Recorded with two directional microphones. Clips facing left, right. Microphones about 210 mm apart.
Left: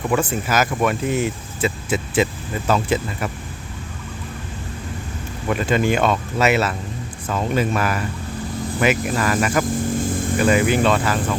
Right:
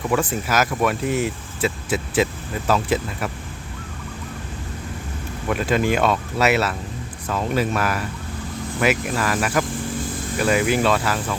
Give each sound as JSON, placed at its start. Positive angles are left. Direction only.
{"t": 0.1, "sound": "speech", "side_deg": 0}
{"t": 5.5, "sound": "speech", "side_deg": 0}
{"t": 9.7, "sound": "vehicle", "side_deg": 50}
{"t": 10.3, "sound": "speech", "side_deg": 0}